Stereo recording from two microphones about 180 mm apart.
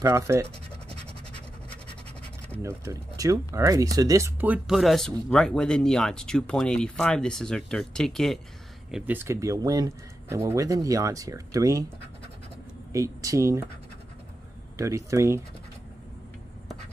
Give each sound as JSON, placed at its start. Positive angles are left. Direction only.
{"t": 0.0, "sound": "speech", "side_deg": -15}
{"t": 2.6, "sound": "speech", "side_deg": -15}
{"t": 8.9, "sound": "speech", "side_deg": -10}
{"t": 12.9, "sound": "speech", "side_deg": -15}
{"t": 14.8, "sound": "speech", "side_deg": -15}